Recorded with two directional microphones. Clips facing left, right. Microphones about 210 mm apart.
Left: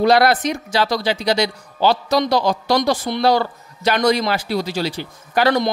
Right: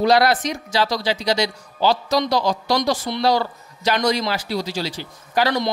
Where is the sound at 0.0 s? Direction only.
55° left (ahead or behind).